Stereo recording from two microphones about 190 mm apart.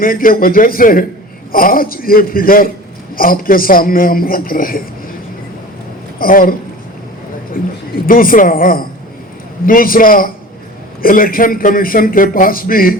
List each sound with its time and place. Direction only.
0.0 s a man's voice: 50° left (ahead or behind)
6.1 s a man's voice: 50° left (ahead or behind)